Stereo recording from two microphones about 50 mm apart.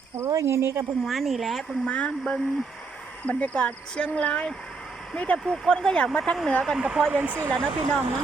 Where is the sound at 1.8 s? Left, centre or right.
Left.